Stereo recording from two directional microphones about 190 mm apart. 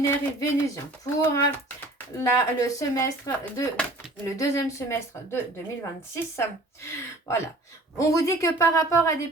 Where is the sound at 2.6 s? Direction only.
15° left (ahead or behind).